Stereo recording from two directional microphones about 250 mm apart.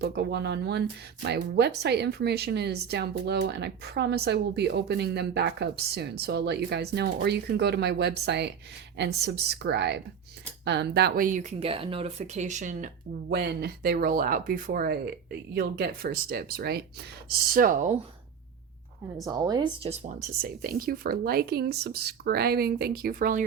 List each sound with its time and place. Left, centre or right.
0.0 s speech: right
13.3 s speech: right
19.1 s speech: centre; by 23.4 s right